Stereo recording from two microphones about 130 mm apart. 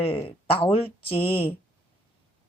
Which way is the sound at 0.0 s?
45° left (ahead or behind).